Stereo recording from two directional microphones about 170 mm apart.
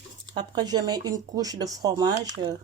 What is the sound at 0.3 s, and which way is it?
Speech, 25° right (ahead or behind).